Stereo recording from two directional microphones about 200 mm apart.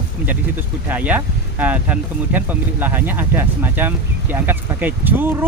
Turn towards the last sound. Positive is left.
turn(degrees=-10)  # may be behind; listen again after turning